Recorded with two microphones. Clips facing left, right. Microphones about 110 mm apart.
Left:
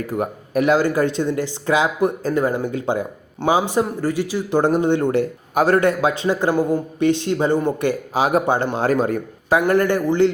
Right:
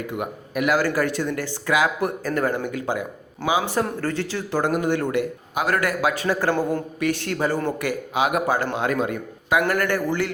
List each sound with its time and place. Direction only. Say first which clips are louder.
0.1 s a man's voice: left 6 dB; 35° left (ahead or behind)
0.7 s speech: left 3 dB; 20° left (ahead or behind)
3.7 s speech: left 4 dB; 15° left (ahead or behind)
4.6 s speech: left 4 dB; 30° left (ahead or behind)